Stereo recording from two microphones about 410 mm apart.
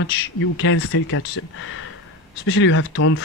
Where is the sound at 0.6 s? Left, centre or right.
Left.